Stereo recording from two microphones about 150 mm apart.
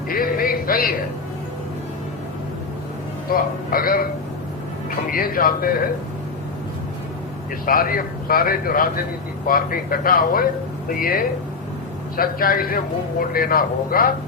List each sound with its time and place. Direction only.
0.1 s music: 70° left (ahead or behind)
3.2 s a man's voice: 75° left (ahead or behind)
5.1 s a man's voice: 70° left (ahead or behind)
7.6 s a man's voice: 70° left (ahead or behind)